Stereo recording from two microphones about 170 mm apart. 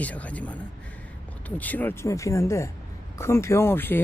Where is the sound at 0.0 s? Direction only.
10° left (ahead or behind).